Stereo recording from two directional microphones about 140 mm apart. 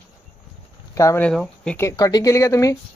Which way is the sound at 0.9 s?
20° left (ahead or behind).